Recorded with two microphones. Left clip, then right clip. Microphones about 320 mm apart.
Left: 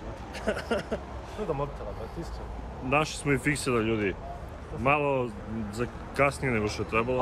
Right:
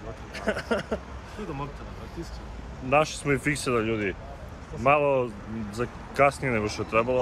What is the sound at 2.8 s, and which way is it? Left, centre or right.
Speech, centre.